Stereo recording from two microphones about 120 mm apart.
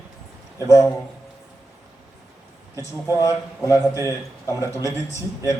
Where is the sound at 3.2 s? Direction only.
25° left (ahead or behind).